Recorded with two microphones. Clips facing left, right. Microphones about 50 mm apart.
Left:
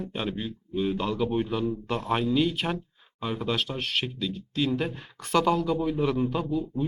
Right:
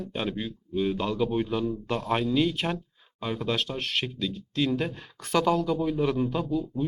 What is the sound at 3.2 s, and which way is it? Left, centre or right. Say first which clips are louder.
Speech: even; centre.